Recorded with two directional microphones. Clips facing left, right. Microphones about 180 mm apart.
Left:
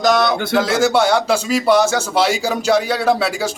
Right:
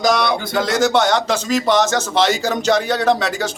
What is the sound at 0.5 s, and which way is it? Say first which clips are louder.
Speech: left 1 dB; 5° left (ahead or behind).